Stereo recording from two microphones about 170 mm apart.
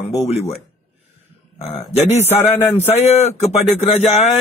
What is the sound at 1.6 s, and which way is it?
Speech, 40° left (ahead or behind).